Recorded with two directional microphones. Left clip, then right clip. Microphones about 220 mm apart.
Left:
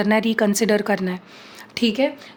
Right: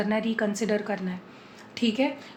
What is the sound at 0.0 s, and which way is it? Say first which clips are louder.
A woman's voice: left 8 dB; 50° left (ahead or behind).